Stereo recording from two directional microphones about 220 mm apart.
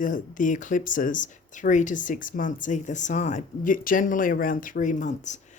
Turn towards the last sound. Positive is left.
turn(degrees=35)  # may be behind; listen again after turning